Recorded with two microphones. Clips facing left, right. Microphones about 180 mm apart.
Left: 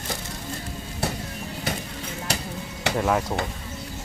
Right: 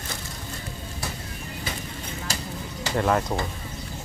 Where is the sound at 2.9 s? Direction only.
5° left (ahead or behind).